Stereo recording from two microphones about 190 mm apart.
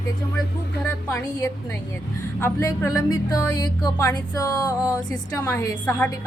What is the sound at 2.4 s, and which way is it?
A woman's voice, 15° left (ahead or behind).